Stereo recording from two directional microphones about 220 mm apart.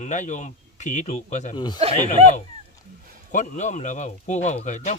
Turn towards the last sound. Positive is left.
turn(degrees=30)  # may be behind; listen again after turning